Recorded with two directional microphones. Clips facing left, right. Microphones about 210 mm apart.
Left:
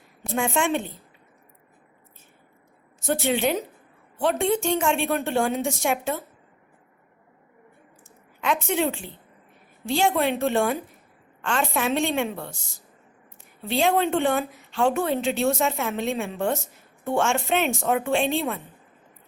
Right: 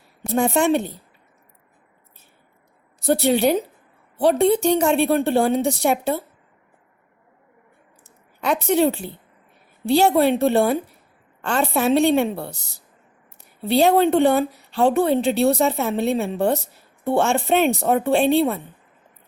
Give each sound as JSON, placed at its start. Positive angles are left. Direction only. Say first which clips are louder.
{"t": 0.2, "sound": "speech", "louder": "right 5 dB", "side_deg": -40}
{"t": 3.0, "sound": "speech", "louder": "right 6 dB", "side_deg": -35}
{"t": 8.4, "sound": "speech", "louder": "right 6 dB", "side_deg": -40}